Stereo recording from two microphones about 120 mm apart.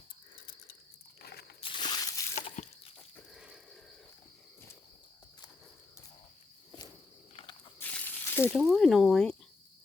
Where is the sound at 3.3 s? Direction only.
5° right (ahead or behind).